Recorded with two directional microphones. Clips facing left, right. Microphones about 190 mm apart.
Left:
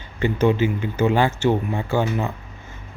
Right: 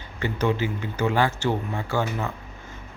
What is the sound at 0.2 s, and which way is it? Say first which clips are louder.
Speech: left 6 dB; 20° left (ahead or behind).